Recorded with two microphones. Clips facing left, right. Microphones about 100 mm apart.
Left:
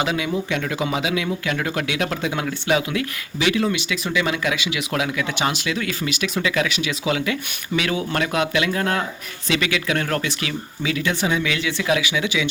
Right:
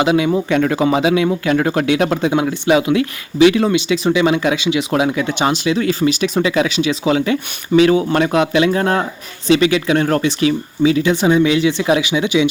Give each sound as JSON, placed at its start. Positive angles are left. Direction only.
{"t": 0.0, "sound": "speech", "side_deg": -25}
{"t": 0.3, "sound": "speech", "side_deg": -45}